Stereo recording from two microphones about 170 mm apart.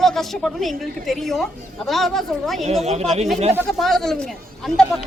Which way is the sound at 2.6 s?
40° right (ahead or behind).